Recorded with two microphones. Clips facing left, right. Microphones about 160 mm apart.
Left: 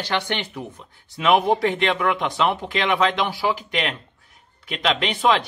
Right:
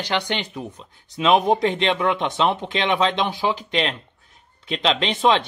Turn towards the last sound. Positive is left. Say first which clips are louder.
# right 1 dB
turn(degrees=-20)  # may be behind; listen again after turning